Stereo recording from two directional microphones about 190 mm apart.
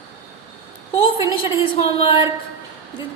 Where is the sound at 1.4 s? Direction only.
30° left (ahead or behind).